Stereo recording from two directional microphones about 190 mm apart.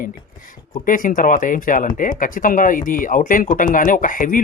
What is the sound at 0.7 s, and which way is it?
Speech, 45° left (ahead or behind).